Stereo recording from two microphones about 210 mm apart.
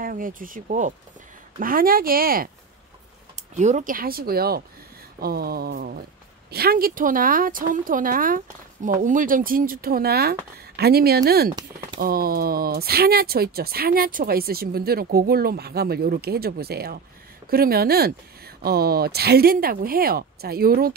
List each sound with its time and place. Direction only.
0.0 s speech: 40° right (ahead or behind)
3.5 s speech: 35° right (ahead or behind)